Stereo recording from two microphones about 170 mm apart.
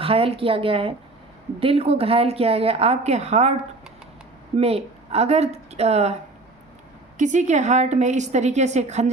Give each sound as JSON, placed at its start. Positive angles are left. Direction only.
{"t": 0.0, "sound": "a woman's voice", "side_deg": -35}
{"t": 4.5, "sound": "a woman's voice", "side_deg": -35}
{"t": 7.2, "sound": "a woman's voice", "side_deg": -45}